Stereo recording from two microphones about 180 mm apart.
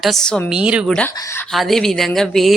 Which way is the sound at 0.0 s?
Centre (ahead or behind).